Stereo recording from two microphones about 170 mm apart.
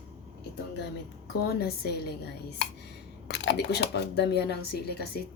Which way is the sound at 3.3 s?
85° left.